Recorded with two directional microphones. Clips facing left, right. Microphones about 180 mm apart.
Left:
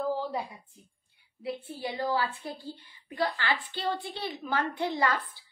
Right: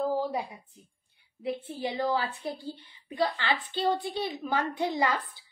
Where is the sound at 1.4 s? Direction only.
20° right (ahead or behind).